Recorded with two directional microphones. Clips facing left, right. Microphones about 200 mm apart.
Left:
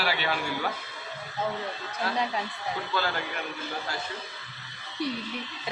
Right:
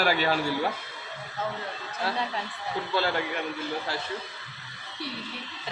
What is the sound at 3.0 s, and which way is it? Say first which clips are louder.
Speech: right 4 dB; 30° right (ahead or behind).